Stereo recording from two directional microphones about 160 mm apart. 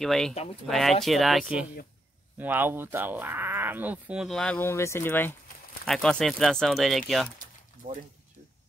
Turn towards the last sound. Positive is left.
turn(degrees=-65)  # may be behind; listen again after turning